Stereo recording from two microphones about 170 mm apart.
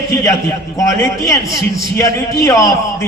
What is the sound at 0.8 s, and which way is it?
A man's voice, 20° left (ahead or behind).